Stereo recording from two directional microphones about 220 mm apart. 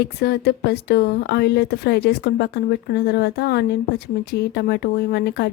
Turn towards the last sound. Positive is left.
turn(degrees=50)  # may be behind; listen again after turning